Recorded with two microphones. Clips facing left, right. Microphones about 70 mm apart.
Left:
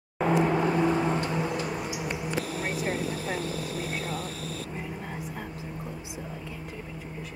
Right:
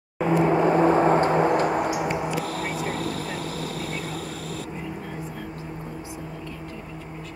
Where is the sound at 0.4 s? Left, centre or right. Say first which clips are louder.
Right 6 dB; centre.